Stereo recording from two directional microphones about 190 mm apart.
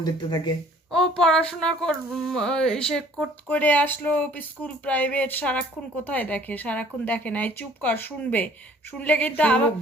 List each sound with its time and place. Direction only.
0.0 s speech: 25° left (ahead or behind)
0.9 s a sound: 5° left (ahead or behind)
6.1 s speech: 5° left (ahead or behind)